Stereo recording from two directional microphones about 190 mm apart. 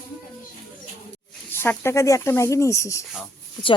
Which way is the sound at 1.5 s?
10° left (ahead or behind).